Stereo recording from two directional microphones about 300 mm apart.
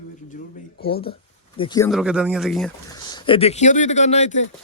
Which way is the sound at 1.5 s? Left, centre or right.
Centre.